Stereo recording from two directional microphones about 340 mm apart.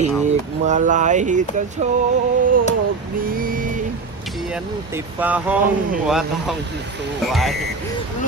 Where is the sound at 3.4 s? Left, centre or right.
Right.